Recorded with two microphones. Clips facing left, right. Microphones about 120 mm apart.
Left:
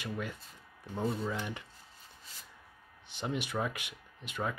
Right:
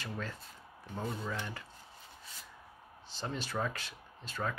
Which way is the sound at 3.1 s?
15° left (ahead or behind).